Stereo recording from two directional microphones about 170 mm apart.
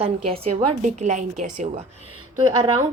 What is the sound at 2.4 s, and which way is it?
Speech, 25° right (ahead or behind).